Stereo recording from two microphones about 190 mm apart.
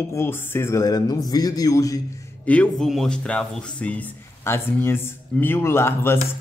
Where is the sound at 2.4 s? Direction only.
5° left (ahead or behind).